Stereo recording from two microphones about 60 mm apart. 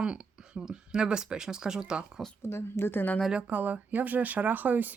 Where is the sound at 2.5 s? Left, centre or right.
Left.